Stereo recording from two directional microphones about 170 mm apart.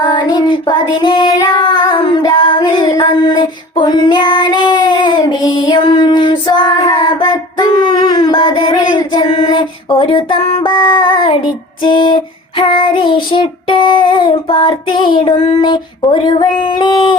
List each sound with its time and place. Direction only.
0.0 s child singing: 25° left (ahead or behind)